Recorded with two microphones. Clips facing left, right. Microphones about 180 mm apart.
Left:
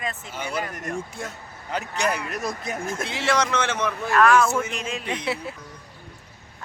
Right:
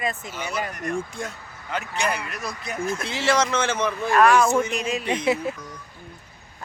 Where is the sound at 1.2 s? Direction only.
5° left (ahead or behind).